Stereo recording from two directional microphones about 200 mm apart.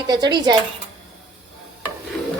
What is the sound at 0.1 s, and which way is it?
Speech, 20° right (ahead or behind).